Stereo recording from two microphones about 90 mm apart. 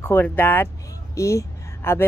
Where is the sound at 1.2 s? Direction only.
35° left (ahead or behind).